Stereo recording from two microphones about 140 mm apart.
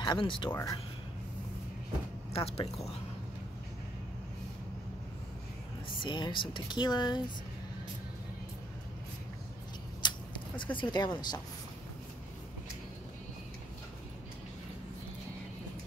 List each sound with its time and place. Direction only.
0.0 s speech: 35° left (ahead or behind)
0.5 s speech: 20° left (ahead or behind)
2.3 s speech: 40° left (ahead or behind)
5.9 s speech: 35° left (ahead or behind)
10.0 s speech: 35° left (ahead or behind)